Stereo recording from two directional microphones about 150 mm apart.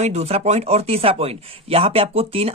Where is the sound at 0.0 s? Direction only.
45° right (ahead or behind).